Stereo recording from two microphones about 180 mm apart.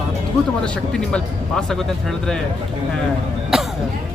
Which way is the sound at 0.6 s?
5° left (ahead or behind).